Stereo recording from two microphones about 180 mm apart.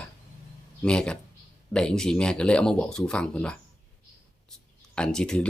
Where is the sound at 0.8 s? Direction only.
5° left (ahead or behind).